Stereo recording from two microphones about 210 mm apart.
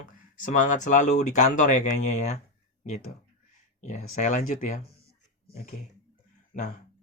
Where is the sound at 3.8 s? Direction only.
35° left (ahead or behind).